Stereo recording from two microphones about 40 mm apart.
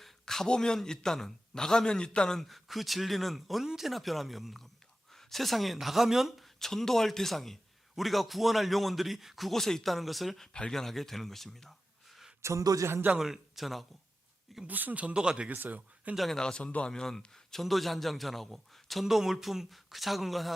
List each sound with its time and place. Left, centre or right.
0.0 s a sound: centre
0.8 s a man's voice: centre
2.4 s a man's voice: centre
6.4 s a man's voice: centre
13.1 s a man's voice: centre
14.7 s speech: right
15.0 s speech: right
15.5 s speech: right
16.1 s a man's voice: centre
16.4 s a man's voice: centre
19.0 s a man's voice: centre